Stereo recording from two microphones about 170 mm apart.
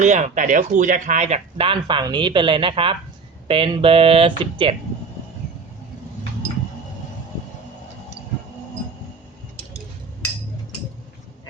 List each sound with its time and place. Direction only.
0.0 s speech: 45° right (ahead or behind)